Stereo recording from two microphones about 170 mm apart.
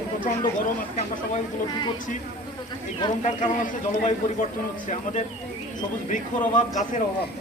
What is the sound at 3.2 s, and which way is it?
Speech, 45° left (ahead or behind).